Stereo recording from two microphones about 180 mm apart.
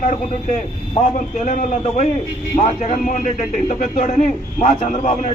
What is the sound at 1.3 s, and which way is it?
A man's voice, 45° left (ahead or behind).